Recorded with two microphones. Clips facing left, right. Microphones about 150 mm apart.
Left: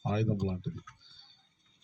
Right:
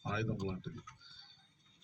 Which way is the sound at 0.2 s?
25° left (ahead or behind).